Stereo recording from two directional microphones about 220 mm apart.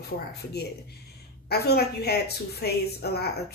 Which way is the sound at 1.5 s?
45° left (ahead or behind).